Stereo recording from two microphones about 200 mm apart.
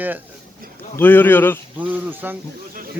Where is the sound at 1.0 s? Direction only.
10° left (ahead or behind).